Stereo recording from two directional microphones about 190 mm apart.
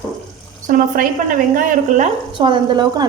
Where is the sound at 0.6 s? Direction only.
40° right (ahead or behind).